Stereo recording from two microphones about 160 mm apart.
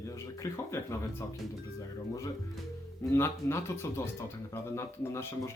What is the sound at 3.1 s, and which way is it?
Speech, 15° left (ahead or behind).